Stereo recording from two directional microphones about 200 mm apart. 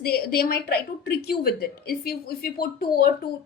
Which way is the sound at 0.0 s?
50° left (ahead or behind).